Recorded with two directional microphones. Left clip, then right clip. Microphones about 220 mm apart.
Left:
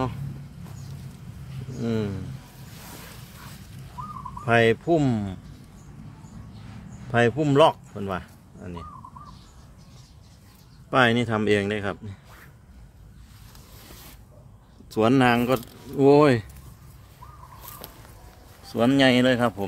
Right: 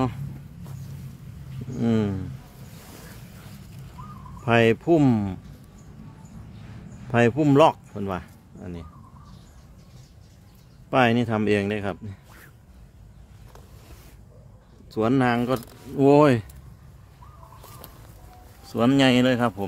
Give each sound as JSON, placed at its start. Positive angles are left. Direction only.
{"t": 1.8, "sound": "speech", "side_deg": -25}
{"t": 4.5, "sound": "speech", "side_deg": -15}
{"t": 7.1, "sound": "speech", "side_deg": -15}
{"t": 10.9, "sound": "speech", "side_deg": -10}
{"t": 14.9, "sound": "speech", "side_deg": 10}
{"t": 16.0, "sound": "speech", "side_deg": -10}
{"t": 18.7, "sound": "speech", "side_deg": -10}